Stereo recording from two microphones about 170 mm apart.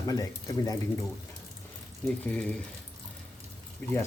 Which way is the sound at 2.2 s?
5° left (ahead or behind).